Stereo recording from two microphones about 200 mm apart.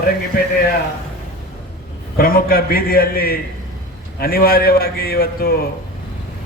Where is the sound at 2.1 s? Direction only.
45° left (ahead or behind).